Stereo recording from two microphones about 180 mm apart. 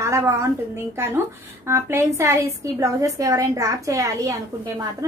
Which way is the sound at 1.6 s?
15° right (ahead or behind).